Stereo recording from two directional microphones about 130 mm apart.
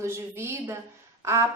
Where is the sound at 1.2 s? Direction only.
20° right (ahead or behind).